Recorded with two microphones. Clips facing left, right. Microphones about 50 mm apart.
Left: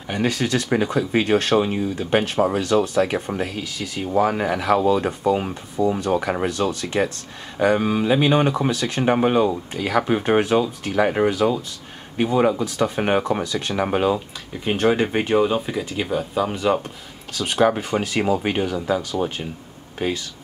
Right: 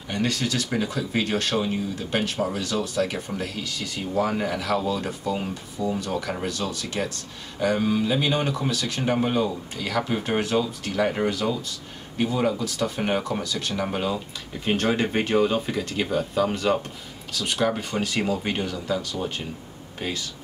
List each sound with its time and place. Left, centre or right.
0.1 s speech: centre
2.6 s speech: centre; by 6.5 s left
6.5 s speech: centre
10.4 s speech: centre
14.6 s speech: centre